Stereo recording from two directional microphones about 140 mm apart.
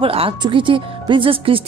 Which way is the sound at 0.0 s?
40° right (ahead or behind).